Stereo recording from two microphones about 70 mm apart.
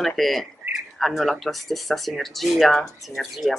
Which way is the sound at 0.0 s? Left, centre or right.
Centre.